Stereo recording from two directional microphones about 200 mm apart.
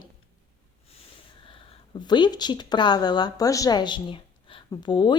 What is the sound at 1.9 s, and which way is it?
A woman's voice, 20° left (ahead or behind).